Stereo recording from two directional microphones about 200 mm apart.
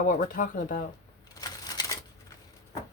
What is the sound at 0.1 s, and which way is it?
Speech, 40° left (ahead or behind).